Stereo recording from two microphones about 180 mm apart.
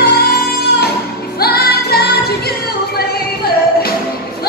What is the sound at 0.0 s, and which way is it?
Music, 60° left (ahead or behind).